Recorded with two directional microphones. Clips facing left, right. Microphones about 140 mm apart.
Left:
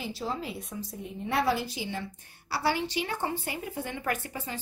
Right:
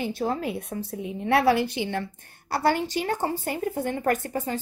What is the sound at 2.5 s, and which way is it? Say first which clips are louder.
A woman's voice: right 5 dB; 50° right (ahead or behind).